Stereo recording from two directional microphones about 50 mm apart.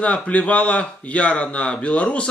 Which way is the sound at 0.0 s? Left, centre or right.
Left.